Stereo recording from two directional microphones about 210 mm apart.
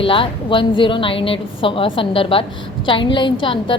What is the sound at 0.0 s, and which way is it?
A woman's voice, 25° left (ahead or behind).